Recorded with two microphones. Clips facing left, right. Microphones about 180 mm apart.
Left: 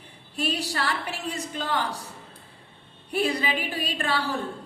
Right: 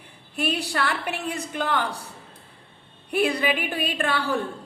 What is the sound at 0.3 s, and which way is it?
A woman's voice, 60° right (ahead or behind).